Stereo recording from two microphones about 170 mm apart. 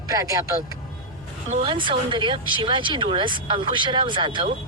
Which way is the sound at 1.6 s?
30° right (ahead or behind).